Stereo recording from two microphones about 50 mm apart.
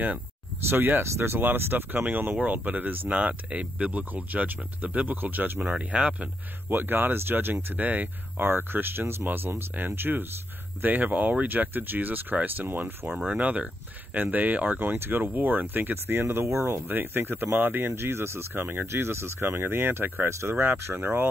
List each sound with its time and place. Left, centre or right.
0.7 s speech: right
1.0 s speech: right
1.4 s speech: right
5.6 s speech: right
6.7 s speech: right
7.6 s speech: right
8.5 s speech: right
13.3 s speech: right
20.2 s speech: right
20.6 s speech: right